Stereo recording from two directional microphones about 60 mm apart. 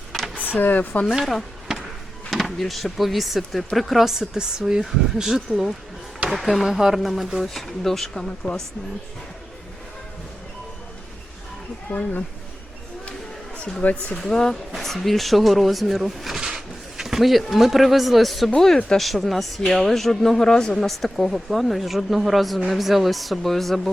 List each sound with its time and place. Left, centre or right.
0.3 s speech: left
1.3 s a sound: centre
2.3 s a woman's voice: centre
11.9 s speech: left
13.8 s speech: left
14.2 s speech: centre